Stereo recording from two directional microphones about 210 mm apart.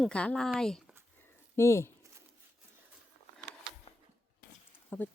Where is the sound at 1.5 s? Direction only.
15° left (ahead or behind).